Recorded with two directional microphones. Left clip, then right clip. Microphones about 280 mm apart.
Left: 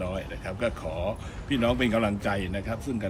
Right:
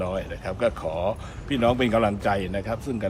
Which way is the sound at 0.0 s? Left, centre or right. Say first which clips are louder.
Right 4 dB; centre.